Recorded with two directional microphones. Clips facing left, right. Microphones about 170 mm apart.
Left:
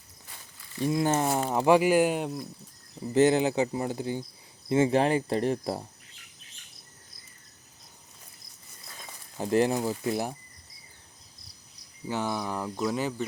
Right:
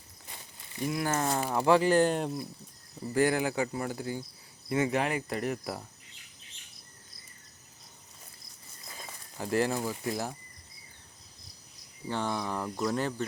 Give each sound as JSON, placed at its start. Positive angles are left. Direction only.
{"t": 0.3, "sound": "a sound", "side_deg": -20}
{"t": 0.9, "sound": "speech", "side_deg": 25}
{"t": 3.0, "sound": "speech", "side_deg": 20}
{"t": 8.9, "sound": "a sound", "side_deg": -5}
{"t": 9.4, "sound": "speech", "side_deg": 20}
{"t": 12.0, "sound": "speech", "side_deg": 5}